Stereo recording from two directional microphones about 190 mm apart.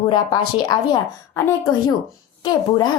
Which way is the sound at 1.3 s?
10° left (ahead or behind).